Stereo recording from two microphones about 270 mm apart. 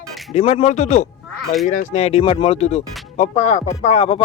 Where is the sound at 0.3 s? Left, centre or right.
Left.